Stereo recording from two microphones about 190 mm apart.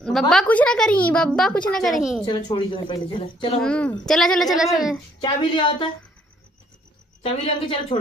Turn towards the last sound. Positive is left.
turn(degrees=30)  # may be behind; listen again after turning